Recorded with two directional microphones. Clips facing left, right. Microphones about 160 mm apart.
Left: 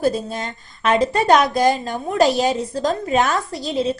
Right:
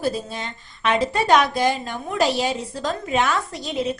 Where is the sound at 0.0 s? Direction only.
45° left (ahead or behind).